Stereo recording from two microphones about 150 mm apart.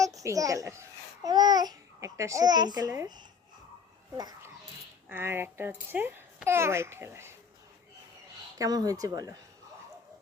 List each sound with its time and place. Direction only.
0.0 s a child's voice: 20° right (ahead or behind)
4.2 s a child's voice: 25° right (ahead or behind)
5.0 s a child's voice: 15° right (ahead or behind)
8.5 s speech: 25° right (ahead or behind)